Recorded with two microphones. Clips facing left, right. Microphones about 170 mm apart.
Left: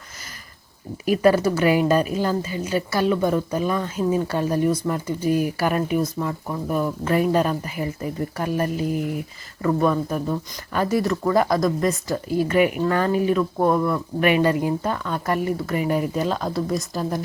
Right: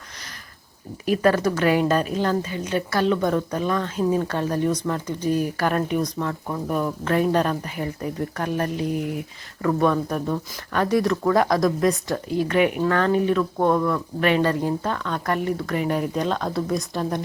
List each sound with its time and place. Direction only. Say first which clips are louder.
1.0 s a woman's voice: left 2 dB; 10° left (ahead or behind)